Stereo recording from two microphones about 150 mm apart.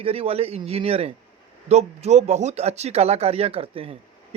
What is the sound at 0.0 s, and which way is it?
Speech, 40° right (ahead or behind).